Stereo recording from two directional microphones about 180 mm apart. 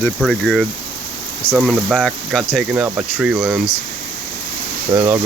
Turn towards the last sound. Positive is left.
turn(degrees=-15)  # may be behind; listen again after turning